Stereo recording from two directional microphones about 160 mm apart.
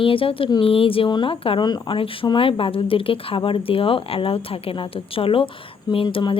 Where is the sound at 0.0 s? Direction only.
35° left (ahead or behind).